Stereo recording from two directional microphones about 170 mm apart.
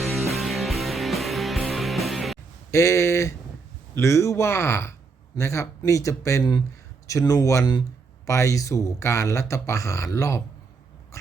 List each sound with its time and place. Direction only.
0.0 s music: centre (ahead or behind)
2.7 s speech: 20° left (ahead or behind)
11.1 s mouse: 15° left (ahead or behind)